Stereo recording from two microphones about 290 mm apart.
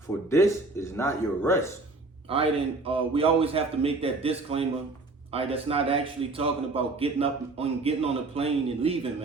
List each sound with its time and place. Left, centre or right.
0.3 s speech: centre
2.3 s a man's voice: centre